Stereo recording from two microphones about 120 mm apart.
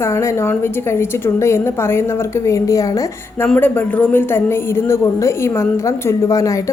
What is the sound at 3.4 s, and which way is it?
Speech, 10° left (ahead or behind).